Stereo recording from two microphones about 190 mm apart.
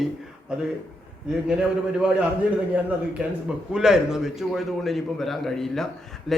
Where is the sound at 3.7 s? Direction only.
5° right (ahead or behind).